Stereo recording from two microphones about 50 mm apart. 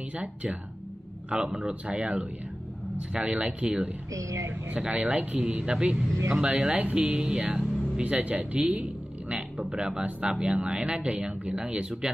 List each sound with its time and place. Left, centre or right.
0.1 s speech: right
1.3 s speech: centre
4.1 s speech: right
4.6 s speech: right